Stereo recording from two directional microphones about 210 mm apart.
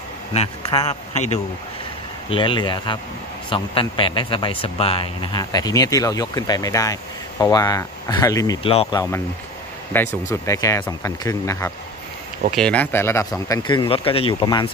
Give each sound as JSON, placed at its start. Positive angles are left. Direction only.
{"t": 0.3, "sound": "a man's voice", "side_deg": 30}
{"t": 9.9, "sound": "speech", "side_deg": 15}